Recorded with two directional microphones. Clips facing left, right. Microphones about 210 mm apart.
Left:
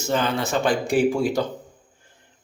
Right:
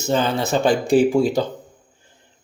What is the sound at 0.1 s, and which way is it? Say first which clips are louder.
Speech: right 3 dB; 30° right (ahead or behind).